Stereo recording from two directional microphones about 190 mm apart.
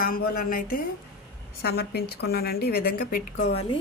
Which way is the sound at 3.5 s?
30° left (ahead or behind).